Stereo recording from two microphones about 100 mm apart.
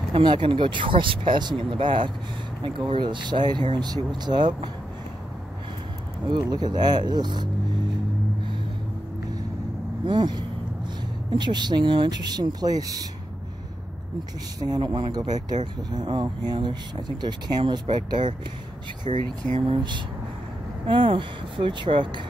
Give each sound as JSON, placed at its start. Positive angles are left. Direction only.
{"t": 0.1, "sound": "speech", "side_deg": -55}
{"t": 6.5, "sound": "speech", "side_deg": -45}
{"t": 10.0, "sound": "speech", "side_deg": -50}
{"t": 14.6, "sound": "speech", "side_deg": -40}
{"t": 19.1, "sound": "speech", "side_deg": -90}
{"t": 19.7, "sound": "speech", "side_deg": -50}